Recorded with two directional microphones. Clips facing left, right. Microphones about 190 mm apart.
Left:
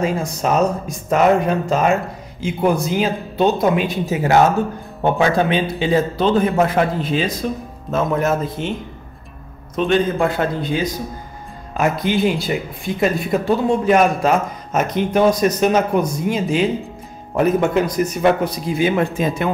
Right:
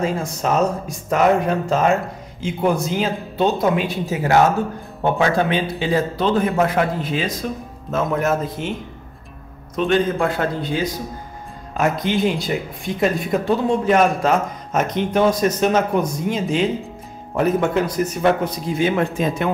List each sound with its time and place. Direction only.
0.0 s a man's voice: 15° left (ahead or behind)
9.8 s a man's voice: 20° left (ahead or behind)
11.7 s speech: 5° left (ahead or behind)